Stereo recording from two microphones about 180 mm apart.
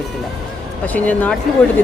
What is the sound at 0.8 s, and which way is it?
Speech, 10° left (ahead or behind).